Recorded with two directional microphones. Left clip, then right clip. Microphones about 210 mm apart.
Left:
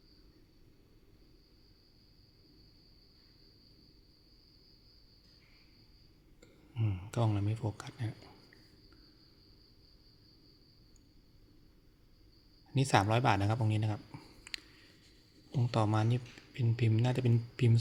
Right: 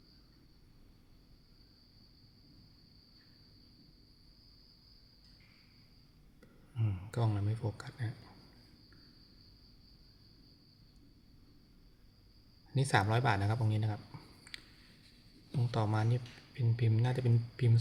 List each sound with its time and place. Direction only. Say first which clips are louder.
6.7 s speech: left 3 dB; 20° left (ahead or behind)
12.7 s speech: left 2 dB; 25° left (ahead or behind)
15.7 s speech: left 3 dB; 25° left (ahead or behind)